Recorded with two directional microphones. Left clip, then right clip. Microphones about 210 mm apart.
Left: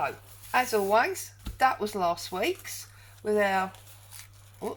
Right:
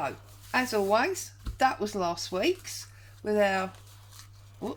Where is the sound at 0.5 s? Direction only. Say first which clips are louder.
Left 2 dB; 35° right (ahead or behind).